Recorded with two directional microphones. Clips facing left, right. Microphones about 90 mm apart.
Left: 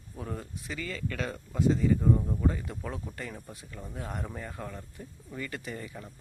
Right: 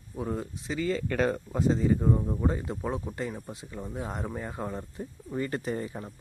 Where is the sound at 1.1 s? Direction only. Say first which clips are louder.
Right 8 dB; 40° right (ahead or behind).